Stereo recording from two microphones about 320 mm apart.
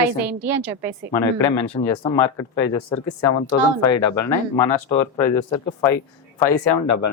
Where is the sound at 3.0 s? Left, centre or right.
Left.